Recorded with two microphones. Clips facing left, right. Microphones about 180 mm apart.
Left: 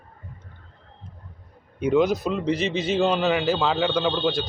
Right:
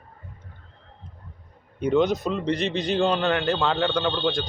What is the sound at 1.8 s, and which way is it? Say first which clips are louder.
A man's voice: left 1 dB; 5° left (ahead or behind).